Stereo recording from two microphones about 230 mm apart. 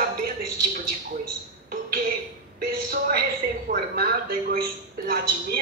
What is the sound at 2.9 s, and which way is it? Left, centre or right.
Speech, right.